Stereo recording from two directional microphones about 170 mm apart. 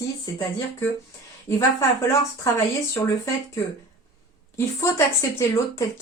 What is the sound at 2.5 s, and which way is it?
Speech, 20° left (ahead or behind).